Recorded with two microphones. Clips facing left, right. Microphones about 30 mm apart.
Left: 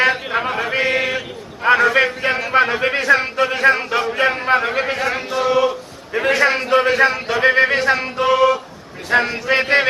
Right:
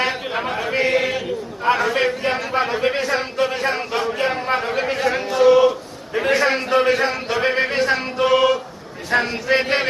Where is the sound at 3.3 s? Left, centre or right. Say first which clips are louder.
Left 4 dB; left.